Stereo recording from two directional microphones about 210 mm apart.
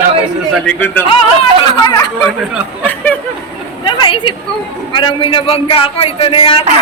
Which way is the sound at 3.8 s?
25° left (ahead or behind).